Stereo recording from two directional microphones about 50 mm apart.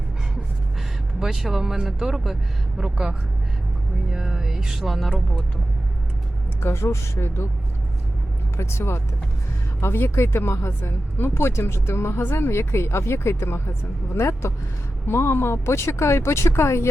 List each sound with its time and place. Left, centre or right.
1.2 s speech: centre
4.1 s music: centre
6.6 s speech: left
8.5 s speech: left